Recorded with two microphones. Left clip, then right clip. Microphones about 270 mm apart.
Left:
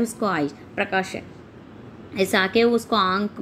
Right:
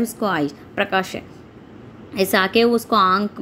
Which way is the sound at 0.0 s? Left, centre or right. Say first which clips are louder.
Right 2 dB; centre.